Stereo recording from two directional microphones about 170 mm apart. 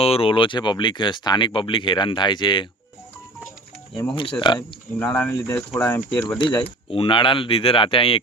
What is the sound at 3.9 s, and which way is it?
Speech, 30° left (ahead or behind).